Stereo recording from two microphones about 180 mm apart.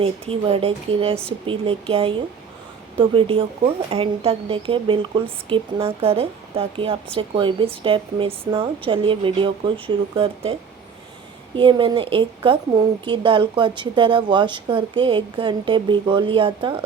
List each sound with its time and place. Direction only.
0.0 s speech: 30° right (ahead or behind)